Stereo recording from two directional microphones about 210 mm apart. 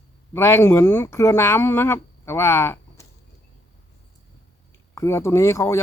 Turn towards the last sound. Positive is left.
turn(degrees=15)  # may be behind; listen again after turning